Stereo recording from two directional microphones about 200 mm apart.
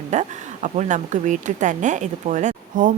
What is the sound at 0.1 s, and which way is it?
A woman's voice, 35° right (ahead or behind).